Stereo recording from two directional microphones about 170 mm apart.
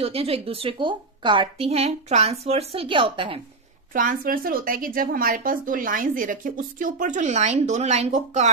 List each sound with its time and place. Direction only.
0.0 s a woman's voice: 35° right (ahead or behind)
3.9 s a woman's voice: 55° right (ahead or behind)